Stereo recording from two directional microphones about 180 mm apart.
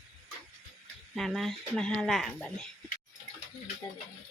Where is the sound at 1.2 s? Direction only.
Centre (ahead or behind).